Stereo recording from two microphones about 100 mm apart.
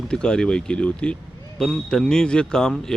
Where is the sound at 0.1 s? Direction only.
10° left (ahead or behind).